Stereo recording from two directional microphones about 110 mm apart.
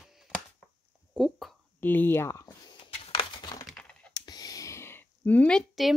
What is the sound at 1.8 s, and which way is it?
Speech, 15° left (ahead or behind).